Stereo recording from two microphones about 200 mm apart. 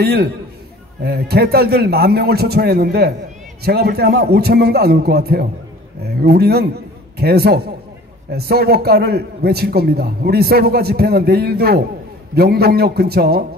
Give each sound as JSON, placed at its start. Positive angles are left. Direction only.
{"t": 0.0, "sound": "a man's voice", "side_deg": -50}